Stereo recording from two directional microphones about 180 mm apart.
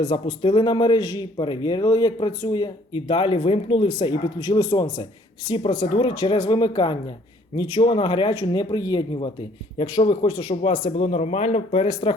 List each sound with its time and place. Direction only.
0.0 s speech: 25° left (ahead or behind)
10.0 s speech: 35° left (ahead or behind)